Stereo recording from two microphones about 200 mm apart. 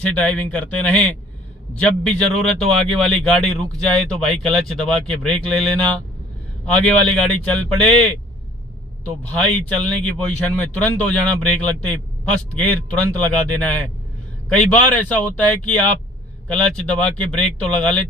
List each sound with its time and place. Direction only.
0.0 s a man's voice: 5° left (ahead or behind)
7.4 s speech: 5° left (ahead or behind)
9.4 s a man's voice: 5° left (ahead or behind)